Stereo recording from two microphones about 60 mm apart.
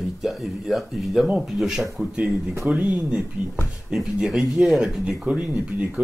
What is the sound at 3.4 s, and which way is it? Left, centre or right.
Speech, right.